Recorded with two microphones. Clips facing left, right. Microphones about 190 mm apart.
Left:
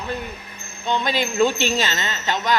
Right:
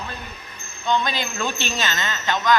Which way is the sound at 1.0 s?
25° left (ahead or behind).